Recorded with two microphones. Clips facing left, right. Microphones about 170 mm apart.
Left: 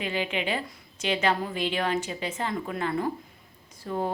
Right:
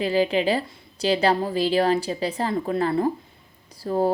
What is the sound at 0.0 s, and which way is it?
A woman's voice, 35° right (ahead or behind).